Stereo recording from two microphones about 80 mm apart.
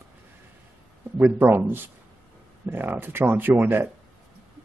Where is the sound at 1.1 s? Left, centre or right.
Right.